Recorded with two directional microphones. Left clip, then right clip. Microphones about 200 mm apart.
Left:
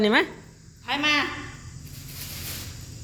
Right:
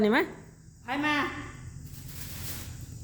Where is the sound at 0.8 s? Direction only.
50° right (ahead or behind).